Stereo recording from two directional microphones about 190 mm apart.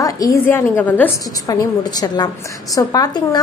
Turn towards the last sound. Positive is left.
turn(degrees=20)  # may be behind; listen again after turning